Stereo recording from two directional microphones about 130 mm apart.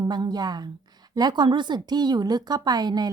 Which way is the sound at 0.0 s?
30° right (ahead or behind).